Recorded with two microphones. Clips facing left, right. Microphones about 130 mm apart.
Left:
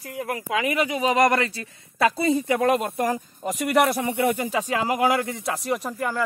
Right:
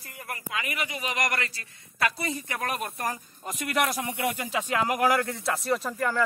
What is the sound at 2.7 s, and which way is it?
Speech, 25° left (ahead or behind).